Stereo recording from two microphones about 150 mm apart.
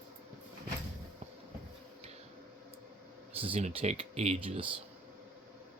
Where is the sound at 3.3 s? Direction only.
40° right (ahead or behind).